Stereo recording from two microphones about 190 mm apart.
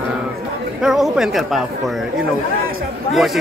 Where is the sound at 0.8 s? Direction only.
Centre (ahead or behind).